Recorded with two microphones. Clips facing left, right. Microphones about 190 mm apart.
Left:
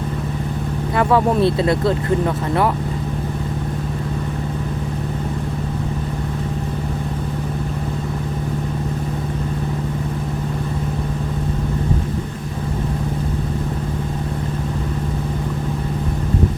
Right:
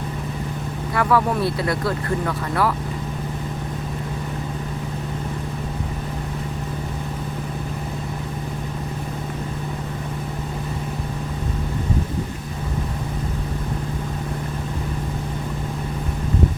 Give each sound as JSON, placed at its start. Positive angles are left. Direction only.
{"t": 0.9, "sound": "speech", "side_deg": 25}